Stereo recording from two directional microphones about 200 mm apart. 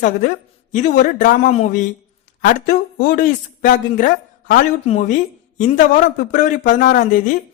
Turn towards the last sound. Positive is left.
turn(degrees=40)  # may be behind; listen again after turning